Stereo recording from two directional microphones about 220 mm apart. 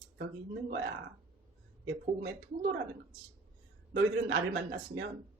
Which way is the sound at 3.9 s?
50° right (ahead or behind).